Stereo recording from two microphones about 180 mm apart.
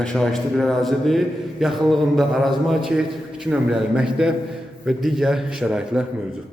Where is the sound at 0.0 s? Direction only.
5° left (ahead or behind).